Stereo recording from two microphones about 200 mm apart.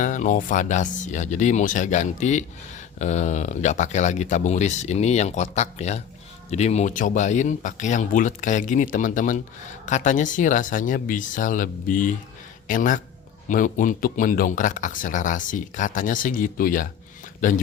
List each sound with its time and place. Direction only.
0.0 s speech: 40° left (ahead or behind)